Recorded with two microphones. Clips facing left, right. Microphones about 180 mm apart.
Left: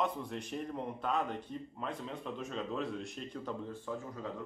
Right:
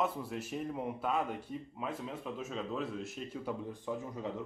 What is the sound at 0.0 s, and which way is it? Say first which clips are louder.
A man's voice: right 1 dB; 5° right (ahead or behind).